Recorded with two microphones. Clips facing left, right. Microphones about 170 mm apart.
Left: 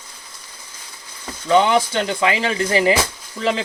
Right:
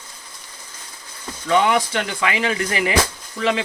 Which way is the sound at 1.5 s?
30° left (ahead or behind).